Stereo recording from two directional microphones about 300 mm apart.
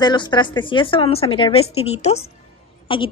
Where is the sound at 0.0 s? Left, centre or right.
Centre.